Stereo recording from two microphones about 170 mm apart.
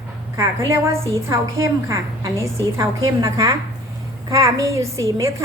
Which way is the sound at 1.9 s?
20° right (ahead or behind).